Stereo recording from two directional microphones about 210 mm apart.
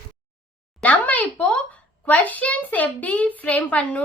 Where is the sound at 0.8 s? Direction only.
5° left (ahead or behind).